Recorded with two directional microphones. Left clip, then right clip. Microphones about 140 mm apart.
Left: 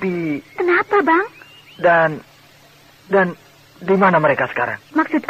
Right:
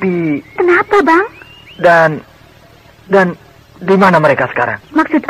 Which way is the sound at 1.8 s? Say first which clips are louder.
Right 6 dB; 35° right (ahead or behind).